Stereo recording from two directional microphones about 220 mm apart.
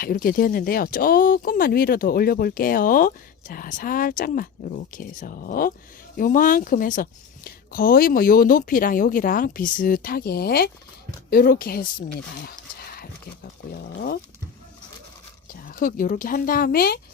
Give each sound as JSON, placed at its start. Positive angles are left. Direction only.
{"t": 0.0, "sound": "speech", "side_deg": 40}
{"t": 13.7, "sound": "speech", "side_deg": 45}
{"t": 15.6, "sound": "speech", "side_deg": 40}